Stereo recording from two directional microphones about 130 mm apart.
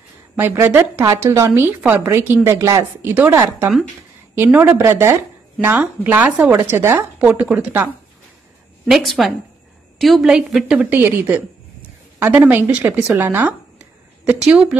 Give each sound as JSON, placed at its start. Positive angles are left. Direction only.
{"t": 0.4, "sound": "speech", "side_deg": -15}
{"t": 8.8, "sound": "speech", "side_deg": 0}